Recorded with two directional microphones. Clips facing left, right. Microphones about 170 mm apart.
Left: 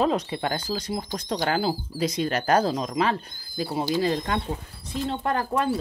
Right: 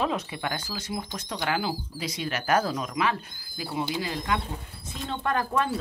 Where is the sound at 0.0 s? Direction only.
35° left (ahead or behind).